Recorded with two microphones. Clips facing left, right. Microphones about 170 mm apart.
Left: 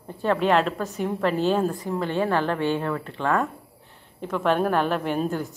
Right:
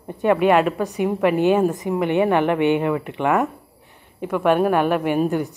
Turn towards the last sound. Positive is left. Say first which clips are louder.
# right 6 dB
turn(degrees=-15)  # may be behind; listen again after turning